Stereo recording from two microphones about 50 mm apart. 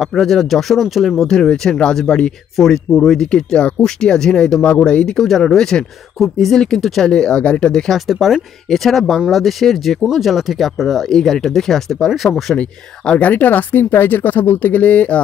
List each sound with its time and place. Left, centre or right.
0.0 s speech: centre
5.2 s speech: centre
7.9 s speech: centre
12.5 s speech: left
13.3 s speech: left